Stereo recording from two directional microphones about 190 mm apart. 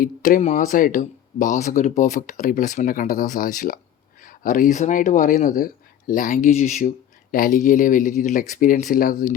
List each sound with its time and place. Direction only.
0.0 s speech: 45° left (ahead or behind)